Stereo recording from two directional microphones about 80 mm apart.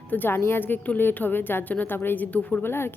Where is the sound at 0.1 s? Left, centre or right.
Left.